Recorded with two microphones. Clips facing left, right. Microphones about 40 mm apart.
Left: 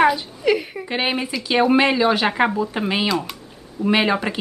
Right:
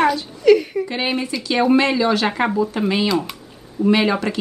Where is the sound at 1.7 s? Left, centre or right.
Centre.